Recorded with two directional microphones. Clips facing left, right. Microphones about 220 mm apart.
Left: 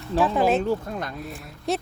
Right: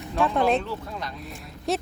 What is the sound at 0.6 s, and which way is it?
Speech, 50° left (ahead or behind).